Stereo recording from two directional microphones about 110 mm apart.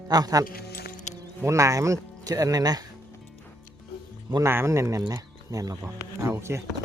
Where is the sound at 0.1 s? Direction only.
35° right (ahead or behind).